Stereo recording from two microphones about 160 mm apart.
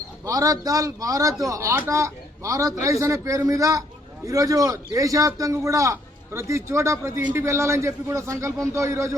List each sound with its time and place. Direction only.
0.3 s a man's voice: 20° right (ahead or behind)